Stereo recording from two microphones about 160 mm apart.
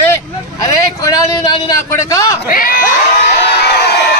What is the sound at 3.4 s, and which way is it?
Crowd, 90° left.